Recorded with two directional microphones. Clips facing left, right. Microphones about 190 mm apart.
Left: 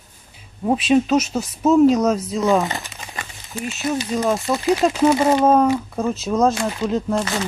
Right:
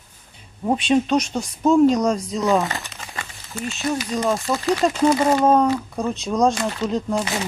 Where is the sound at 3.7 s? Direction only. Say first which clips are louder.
Left 1 dB; 5° left (ahead or behind).